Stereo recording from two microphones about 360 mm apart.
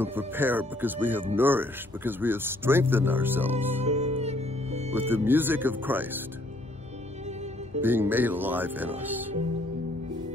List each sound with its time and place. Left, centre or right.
0.0 s speech: centre
3.8 s music: centre
4.9 s speech: centre
7.8 s speech: centre